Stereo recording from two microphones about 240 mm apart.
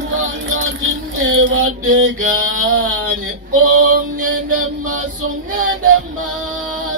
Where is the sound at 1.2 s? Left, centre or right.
Right.